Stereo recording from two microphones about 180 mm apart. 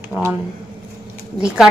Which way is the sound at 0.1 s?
10° right (ahead or behind).